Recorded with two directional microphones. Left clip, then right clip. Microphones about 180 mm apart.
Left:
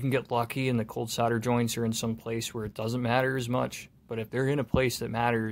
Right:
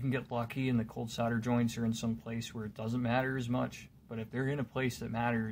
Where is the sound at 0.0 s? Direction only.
60° left (ahead or behind).